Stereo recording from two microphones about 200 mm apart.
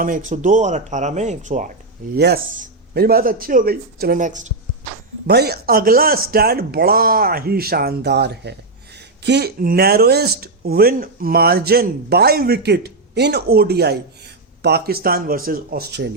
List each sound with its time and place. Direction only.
0.0 s speech: 40° right (ahead or behind)
2.1 s speech: 55° right (ahead or behind); by 4.5 s 40° right (ahead or behind)
5.3 s speech: 55° right (ahead or behind)